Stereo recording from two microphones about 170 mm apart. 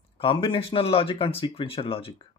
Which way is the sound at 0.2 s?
30° left (ahead or behind).